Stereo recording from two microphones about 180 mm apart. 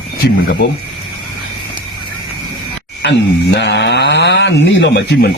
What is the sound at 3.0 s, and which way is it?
Speech, 75° left (ahead or behind).